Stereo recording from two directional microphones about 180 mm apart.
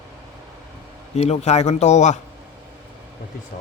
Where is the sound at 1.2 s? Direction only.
35° left (ahead or behind).